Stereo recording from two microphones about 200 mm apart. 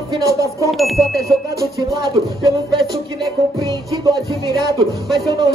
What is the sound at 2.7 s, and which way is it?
Music, 20° right (ahead or behind).